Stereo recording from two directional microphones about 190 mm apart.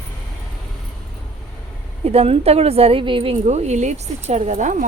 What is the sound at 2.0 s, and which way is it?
A woman's voice, 30° right (ahead or behind).